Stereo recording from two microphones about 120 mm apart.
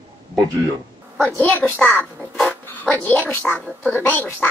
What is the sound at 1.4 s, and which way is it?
Speech, 15° left (ahead or behind).